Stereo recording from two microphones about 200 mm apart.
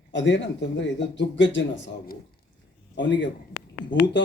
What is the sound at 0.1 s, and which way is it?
Speech, 65° left (ahead or behind).